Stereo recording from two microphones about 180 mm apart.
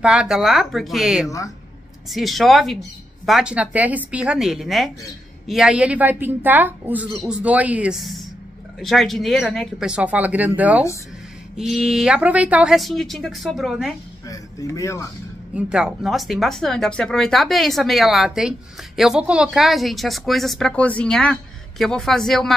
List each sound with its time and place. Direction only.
0.0 s a woman's voice: 5° right (ahead or behind)
14.2 s speech: 20° left (ahead or behind)
15.5 s speech: 5° right (ahead or behind)